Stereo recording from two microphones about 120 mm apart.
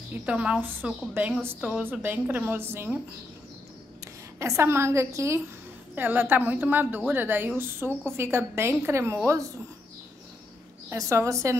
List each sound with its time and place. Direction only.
0.1 s a woman's voice: 10° right (ahead or behind)
4.4 s a woman's voice: 25° right (ahead or behind)
10.9 s a woman's voice: 25° right (ahead or behind)